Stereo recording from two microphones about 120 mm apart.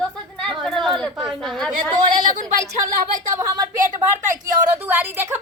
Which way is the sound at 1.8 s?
35° right (ahead or behind).